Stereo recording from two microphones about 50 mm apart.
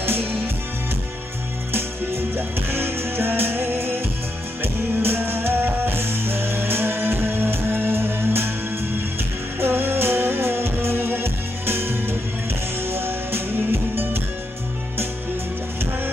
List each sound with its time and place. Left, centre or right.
1.7 s music: right